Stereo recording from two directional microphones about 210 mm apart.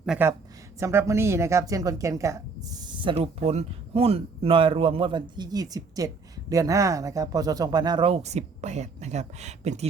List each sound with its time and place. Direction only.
0.0 s a woman's voice: 5° right (ahead or behind); by 9.8 s 30° right (ahead or behind)